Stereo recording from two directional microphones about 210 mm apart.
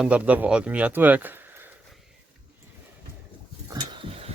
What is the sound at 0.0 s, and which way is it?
Speech, 5° right (ahead or behind).